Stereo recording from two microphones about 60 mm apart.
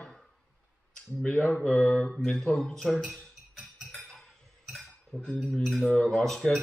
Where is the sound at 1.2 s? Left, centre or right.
Left.